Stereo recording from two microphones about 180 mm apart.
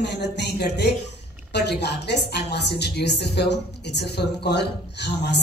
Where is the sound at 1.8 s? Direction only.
70° left (ahead or behind).